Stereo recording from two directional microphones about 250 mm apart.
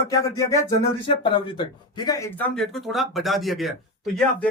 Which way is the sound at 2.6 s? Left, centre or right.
Centre.